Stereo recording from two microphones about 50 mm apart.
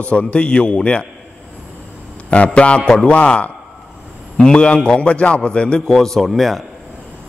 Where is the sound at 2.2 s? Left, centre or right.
Left; by 6.6 s centre.